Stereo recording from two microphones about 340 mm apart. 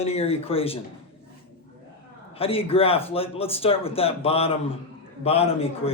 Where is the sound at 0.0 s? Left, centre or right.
Centre.